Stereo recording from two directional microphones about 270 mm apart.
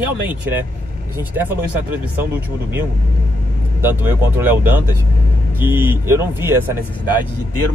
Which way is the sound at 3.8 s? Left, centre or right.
Centre.